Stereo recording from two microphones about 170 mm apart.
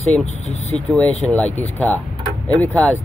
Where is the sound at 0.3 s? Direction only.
40° left (ahead or behind).